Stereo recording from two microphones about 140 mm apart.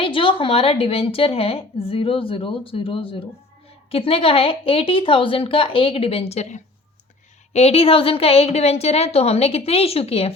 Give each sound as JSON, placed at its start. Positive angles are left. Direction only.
{"t": 0.0, "sound": "a woman's voice", "side_deg": 40}